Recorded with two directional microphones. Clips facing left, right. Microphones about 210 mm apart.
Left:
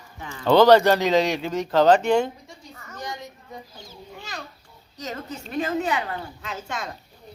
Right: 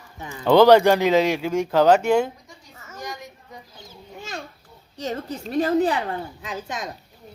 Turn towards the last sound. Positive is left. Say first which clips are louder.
# right 1 dB
turn(degrees=-15)  # may be behind; listen again after turning